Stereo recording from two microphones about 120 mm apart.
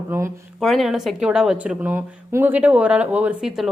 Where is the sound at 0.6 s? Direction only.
Centre (ahead or behind).